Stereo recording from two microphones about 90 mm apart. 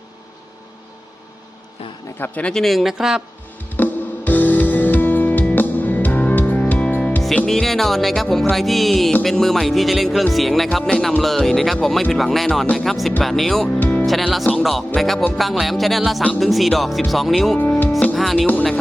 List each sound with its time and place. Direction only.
2.1 s speech: 25° left (ahead or behind)
2.4 s speech: 5° left (ahead or behind)
3.8 s music: 20° left (ahead or behind)
7.3 s speech: 5° left (ahead or behind)
13.7 s music: 20° left (ahead or behind)
14.0 s music: centre (ahead or behind)
14.4 s speech: 5° left (ahead or behind)
17.6 s speech: 15° left (ahead or behind)
18.2 s speech: centre (ahead or behind)
18.4 s speech: 15° left (ahead or behind)